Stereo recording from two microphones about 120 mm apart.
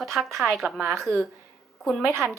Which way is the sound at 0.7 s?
15° right (ahead or behind).